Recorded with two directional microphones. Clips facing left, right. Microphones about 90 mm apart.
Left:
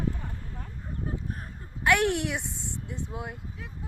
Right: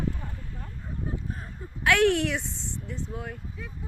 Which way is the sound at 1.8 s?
10° left (ahead or behind).